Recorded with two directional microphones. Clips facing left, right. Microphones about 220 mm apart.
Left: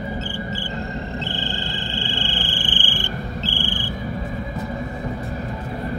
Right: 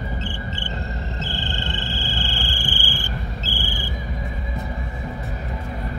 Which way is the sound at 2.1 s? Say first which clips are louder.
Left 2 dB; 40° right (ahead or behind).